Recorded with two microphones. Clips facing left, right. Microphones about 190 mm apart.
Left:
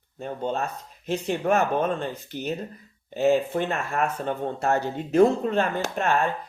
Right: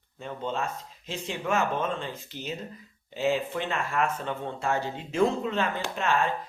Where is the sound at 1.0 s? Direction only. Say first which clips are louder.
Left 8 dB; 60° left (ahead or behind).